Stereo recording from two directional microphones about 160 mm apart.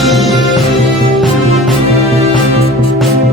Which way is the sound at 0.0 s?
Centre (ahead or behind).